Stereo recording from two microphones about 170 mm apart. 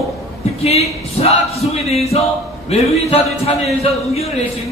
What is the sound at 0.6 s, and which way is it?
A man's voice, 35° left (ahead or behind).